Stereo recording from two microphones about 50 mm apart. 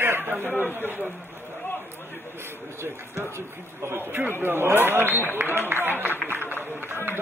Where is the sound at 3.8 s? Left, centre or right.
Right.